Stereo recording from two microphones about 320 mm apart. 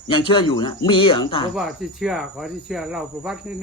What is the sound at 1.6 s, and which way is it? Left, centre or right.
Speech, centre.